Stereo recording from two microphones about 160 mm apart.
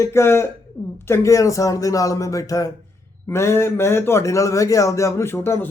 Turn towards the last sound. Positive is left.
turn(degrees=15)  # may be behind; listen again after turning